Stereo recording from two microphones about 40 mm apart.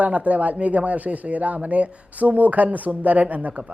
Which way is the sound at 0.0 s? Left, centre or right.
Right.